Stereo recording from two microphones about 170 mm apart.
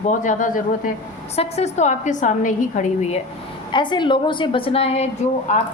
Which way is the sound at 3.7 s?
25° left (ahead or behind).